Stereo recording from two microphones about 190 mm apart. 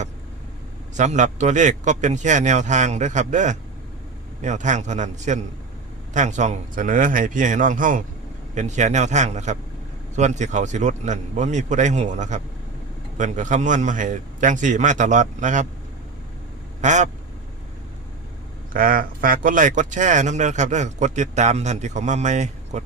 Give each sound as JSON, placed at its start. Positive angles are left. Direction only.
{"t": 0.9, "sound": "speech", "side_deg": -40}
{"t": 16.8, "sound": "speech", "side_deg": -40}
{"t": 18.7, "sound": "speech", "side_deg": -50}